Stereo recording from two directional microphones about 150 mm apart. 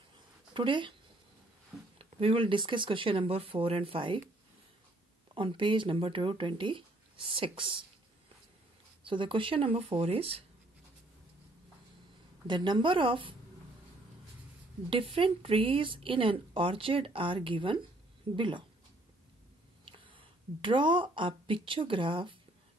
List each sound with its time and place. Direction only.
0.5 s speech: 35° right (ahead or behind)
2.0 s speech: 35° right (ahead or behind)
5.3 s speech: 35° right (ahead or behind)
9.0 s speech: 35° right (ahead or behind)
12.4 s speech: 30° right (ahead or behind)
14.9 s speech: 35° right (ahead or behind)
19.8 s a woman's voice: 35° right (ahead or behind)